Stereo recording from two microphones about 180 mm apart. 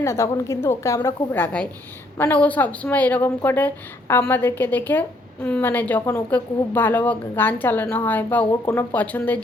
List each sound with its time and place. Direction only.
0.0 s a woman's voice: 15° left (ahead or behind)